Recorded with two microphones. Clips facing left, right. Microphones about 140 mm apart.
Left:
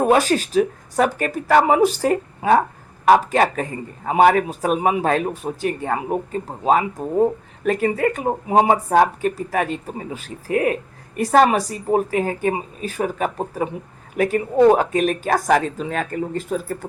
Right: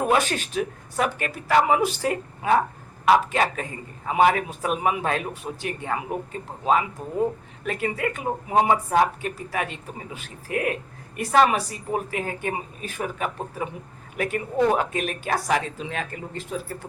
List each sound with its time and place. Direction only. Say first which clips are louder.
0.0 s speech: left 6 dB; 35° left (ahead or behind)